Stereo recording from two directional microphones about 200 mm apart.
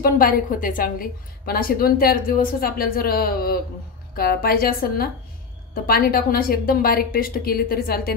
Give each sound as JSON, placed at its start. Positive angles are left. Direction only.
{"t": 0.0, "sound": "a woman's voice", "side_deg": 45}